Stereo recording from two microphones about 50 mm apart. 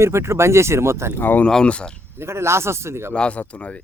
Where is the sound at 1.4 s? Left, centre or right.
Centre.